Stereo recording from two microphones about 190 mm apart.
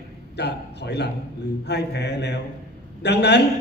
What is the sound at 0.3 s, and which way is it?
Speech, 60° left (ahead or behind).